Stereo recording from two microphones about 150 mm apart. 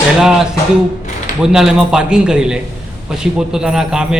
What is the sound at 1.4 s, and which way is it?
A man's voice, 5° right (ahead or behind).